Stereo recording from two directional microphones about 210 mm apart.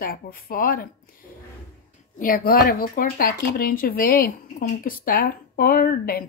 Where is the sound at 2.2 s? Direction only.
45° left (ahead or behind).